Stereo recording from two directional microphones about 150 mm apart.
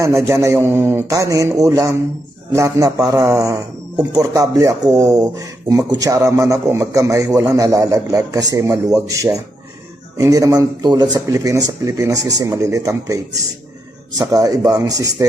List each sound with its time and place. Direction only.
0.3 s speech: 20° right (ahead or behind)
14.2 s speech: 25° right (ahead or behind)